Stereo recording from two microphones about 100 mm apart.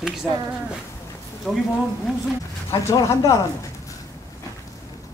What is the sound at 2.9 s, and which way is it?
Speech, 35° left (ahead or behind).